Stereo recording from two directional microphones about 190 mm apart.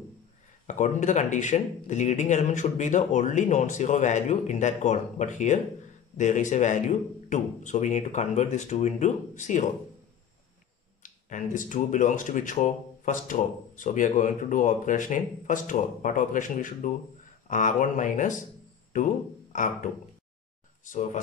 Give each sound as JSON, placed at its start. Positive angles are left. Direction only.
{"t": 0.7, "sound": "speech", "side_deg": 40}
{"t": 11.0, "sound": "speech", "side_deg": 40}
{"t": 19.5, "sound": "speech", "side_deg": 40}